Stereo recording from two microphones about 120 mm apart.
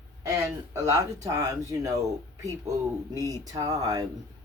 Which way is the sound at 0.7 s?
25° right (ahead or behind).